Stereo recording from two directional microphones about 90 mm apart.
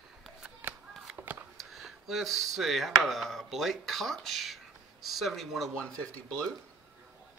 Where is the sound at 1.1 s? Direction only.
20° right (ahead or behind).